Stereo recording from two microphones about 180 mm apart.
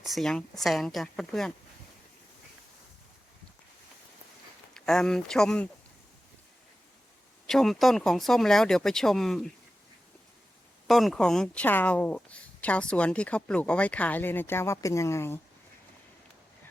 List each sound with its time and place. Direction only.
0.0 s speech: centre (ahead or behind)
4.7 s speech: 5° left (ahead or behind)
7.4 s speech: centre (ahead or behind)
10.8 s speech: centre (ahead or behind)